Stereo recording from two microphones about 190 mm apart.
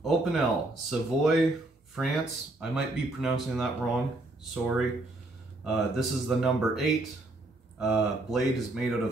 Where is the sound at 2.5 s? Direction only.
5° right (ahead or behind).